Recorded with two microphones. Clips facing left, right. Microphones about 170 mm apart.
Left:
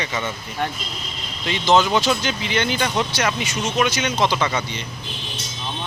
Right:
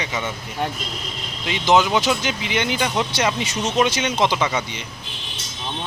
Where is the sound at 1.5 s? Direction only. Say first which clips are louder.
Even; 15° right (ahead or behind).